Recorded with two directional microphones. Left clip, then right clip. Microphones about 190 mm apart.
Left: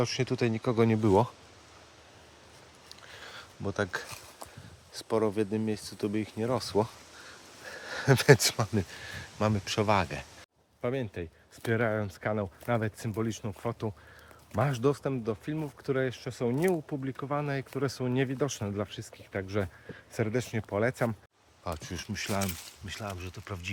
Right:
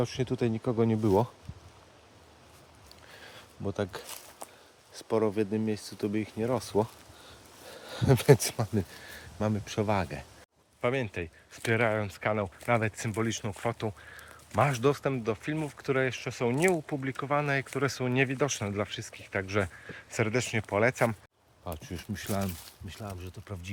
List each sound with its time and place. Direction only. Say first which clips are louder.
0.0 s speech: left 1 dB; 10° right (ahead or behind)
3.1 s a sound: left 3 dB; 15° right (ahead or behind)
3.7 s speech: left 2 dB; 15° right (ahead or behind); by 13.7 s 5° left (ahead or behind)
14.5 s speech: right 3 dB; 15° left (ahead or behind)
21.8 s speech: even; 20° right (ahead or behind)
22.9 s speech: left 4 dB; 5° right (ahead or behind)